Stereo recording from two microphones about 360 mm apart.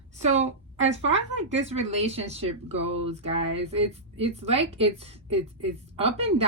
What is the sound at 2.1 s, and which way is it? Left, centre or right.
A woman's voice, centre.